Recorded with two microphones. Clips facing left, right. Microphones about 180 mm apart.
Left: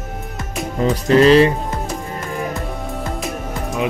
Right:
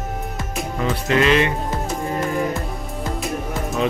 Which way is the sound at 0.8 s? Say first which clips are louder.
Left 6 dB; 35° left (ahead or behind).